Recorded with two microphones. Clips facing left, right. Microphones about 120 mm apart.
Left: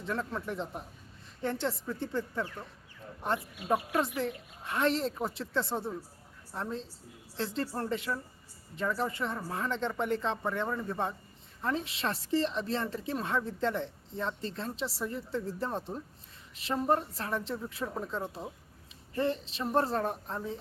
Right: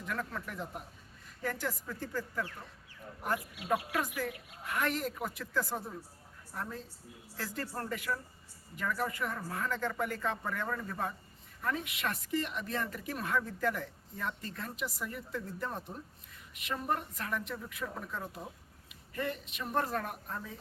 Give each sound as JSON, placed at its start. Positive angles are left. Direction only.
{"t": 0.0, "sound": "speech", "side_deg": 25}